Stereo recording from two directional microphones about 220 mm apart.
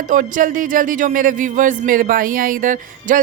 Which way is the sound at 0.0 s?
35° right (ahead or behind).